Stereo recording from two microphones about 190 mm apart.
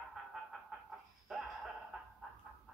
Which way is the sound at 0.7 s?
5° right (ahead or behind).